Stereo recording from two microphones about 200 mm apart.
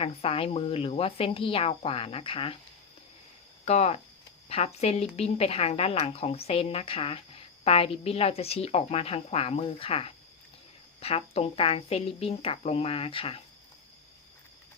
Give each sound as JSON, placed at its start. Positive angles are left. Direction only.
{"t": 0.0, "sound": "speech", "side_deg": 30}
{"t": 3.7, "sound": "speech", "side_deg": 30}